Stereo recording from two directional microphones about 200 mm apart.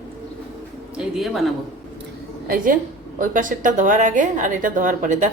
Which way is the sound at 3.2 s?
40° right (ahead or behind).